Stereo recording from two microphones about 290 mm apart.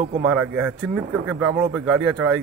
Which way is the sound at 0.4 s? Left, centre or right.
Centre.